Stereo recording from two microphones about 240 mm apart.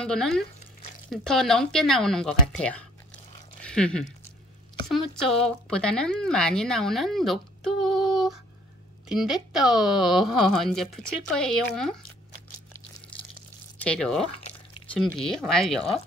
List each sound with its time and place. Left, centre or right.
0.0 s speech: centre
3.6 s a sound: centre
4.8 s speech: centre
13.7 s speech: centre
14.2 s drip: left
15.0 s speech: centre